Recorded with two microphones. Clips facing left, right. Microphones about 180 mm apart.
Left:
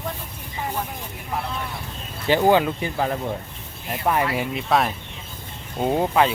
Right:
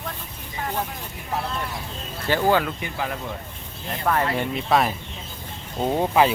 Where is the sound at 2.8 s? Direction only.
35° left (ahead or behind).